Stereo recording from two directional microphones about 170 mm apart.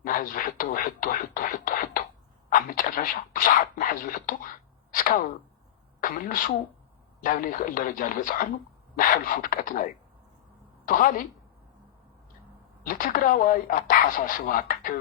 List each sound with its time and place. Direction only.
0.0 s speech: 55° left (ahead or behind)
4.9 s a sound: 55° left (ahead or behind)
6.0 s a woman's voice: 55° left (ahead or behind)
10.8 s a woman's voice: 55° left (ahead or behind)
12.8 s speech: 55° left (ahead or behind)